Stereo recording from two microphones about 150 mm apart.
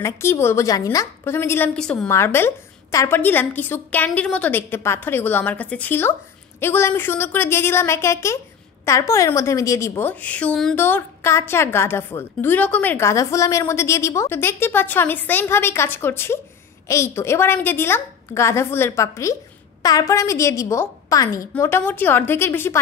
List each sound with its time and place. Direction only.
0.0 s a woman's voice: 15° left (ahead or behind)
2.0 s a woman's voice: 15° left (ahead or behind)